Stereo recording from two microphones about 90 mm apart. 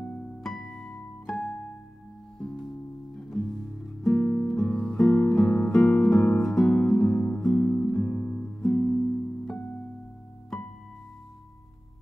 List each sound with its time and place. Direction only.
0.0 s music: 10° left (ahead or behind)
5.4 s guitar: 25° left (ahead or behind)
5.7 s music: 5° left (ahead or behind)
6.1 s music: 35° left (ahead or behind)
6.4 s music: centre (ahead or behind)
7.4 s guitar: 15° left (ahead or behind)
8.0 s music: 25° left (ahead or behind)